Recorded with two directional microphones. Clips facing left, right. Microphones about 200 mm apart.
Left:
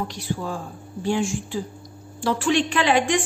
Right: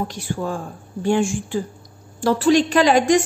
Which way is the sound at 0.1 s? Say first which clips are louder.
Right 3 dB; 50° right (ahead or behind).